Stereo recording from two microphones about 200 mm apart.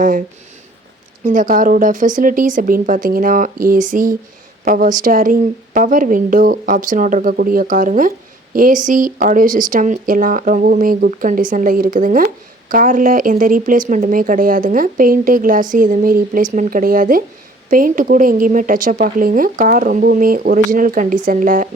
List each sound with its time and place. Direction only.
0.0 s speech: 40° right (ahead or behind)